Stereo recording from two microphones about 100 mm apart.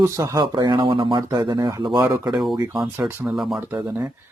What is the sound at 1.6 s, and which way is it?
Speech, 35° right (ahead or behind).